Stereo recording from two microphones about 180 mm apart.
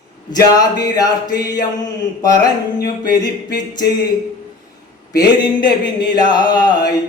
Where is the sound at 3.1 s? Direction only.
20° left (ahead or behind).